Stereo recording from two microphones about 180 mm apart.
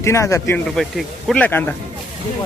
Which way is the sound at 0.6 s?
Centre (ahead or behind).